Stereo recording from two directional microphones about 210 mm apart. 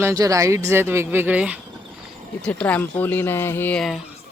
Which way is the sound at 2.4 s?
5° left (ahead or behind).